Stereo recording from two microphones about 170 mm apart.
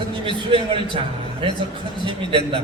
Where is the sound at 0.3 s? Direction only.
30° right (ahead or behind).